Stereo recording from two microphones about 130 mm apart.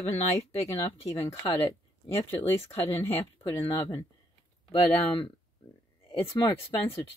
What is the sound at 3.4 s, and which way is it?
Speech, 45° left (ahead or behind).